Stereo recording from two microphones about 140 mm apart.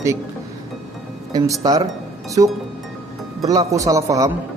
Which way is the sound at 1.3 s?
25° right (ahead or behind).